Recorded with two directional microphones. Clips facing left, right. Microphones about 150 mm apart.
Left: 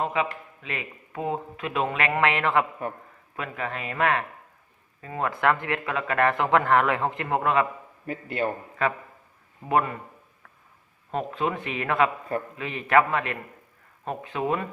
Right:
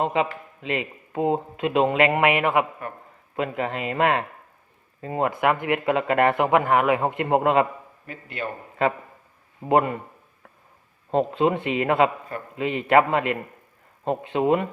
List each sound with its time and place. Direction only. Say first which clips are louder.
0.0 s speech: right 4 dB; 25° right (ahead or behind)
3.3 s speech: right 6 dB; 30° right (ahead or behind)
8.0 s a man's voice: left 5 dB; 35° left (ahead or behind)
9.6 s speech: right 4 dB; 25° right (ahead or behind)
11.1 s speech: right 7 dB; 30° right (ahead or behind)